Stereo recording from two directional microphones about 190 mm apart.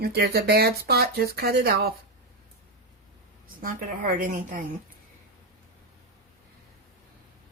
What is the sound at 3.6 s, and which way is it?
Speech, 45° right (ahead or behind).